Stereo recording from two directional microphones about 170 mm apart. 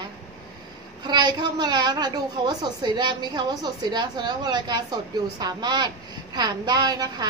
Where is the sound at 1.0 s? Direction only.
25° right (ahead or behind).